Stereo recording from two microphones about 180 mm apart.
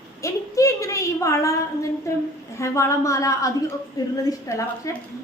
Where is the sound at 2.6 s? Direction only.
15° left (ahead or behind).